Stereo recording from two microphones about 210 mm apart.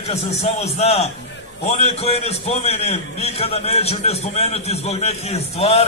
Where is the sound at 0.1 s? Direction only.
30° left (ahead or behind).